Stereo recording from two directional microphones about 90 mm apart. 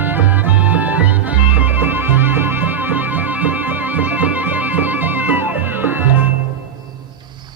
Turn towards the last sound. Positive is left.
turn(degrees=-20)  # may be behind; listen again after turning